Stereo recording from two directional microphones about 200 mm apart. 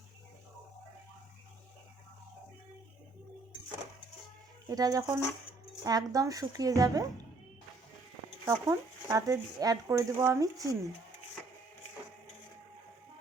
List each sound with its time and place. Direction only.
4.7 s speech: 20° right (ahead or behind)
8.4 s speech: 15° right (ahead or behind)